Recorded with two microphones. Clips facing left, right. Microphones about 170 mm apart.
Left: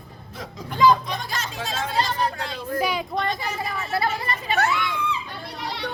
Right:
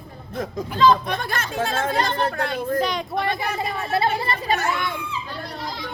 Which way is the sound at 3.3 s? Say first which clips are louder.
Right 3 dB; 60° right (ahead or behind).